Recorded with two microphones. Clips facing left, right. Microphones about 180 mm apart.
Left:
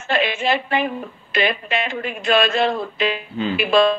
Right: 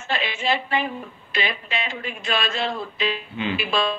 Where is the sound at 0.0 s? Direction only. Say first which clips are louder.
Left 6 dB; 55° left (ahead or behind).